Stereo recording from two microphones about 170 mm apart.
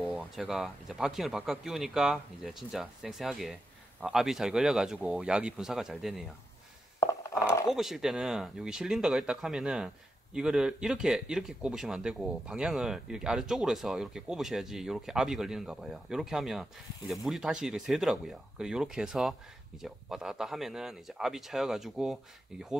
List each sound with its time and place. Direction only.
0.4 s a man's voice: 5° right (ahead or behind)
7.0 s a sound: 20° left (ahead or behind)
7.6 s a man's voice: centre (ahead or behind)